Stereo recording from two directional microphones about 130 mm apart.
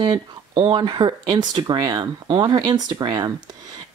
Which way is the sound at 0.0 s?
35° right (ahead or behind).